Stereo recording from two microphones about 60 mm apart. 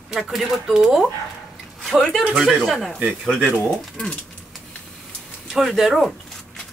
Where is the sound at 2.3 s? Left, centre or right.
Centre.